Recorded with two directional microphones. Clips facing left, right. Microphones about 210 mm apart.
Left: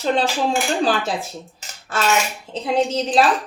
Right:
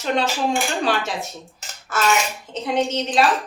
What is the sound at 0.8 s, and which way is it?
Speech, 30° left (ahead or behind).